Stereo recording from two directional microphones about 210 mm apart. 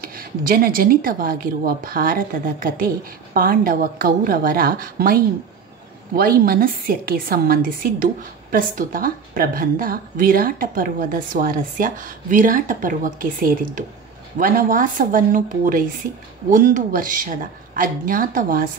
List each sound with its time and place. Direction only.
0.0 s a woman's voice: 45° right (ahead or behind)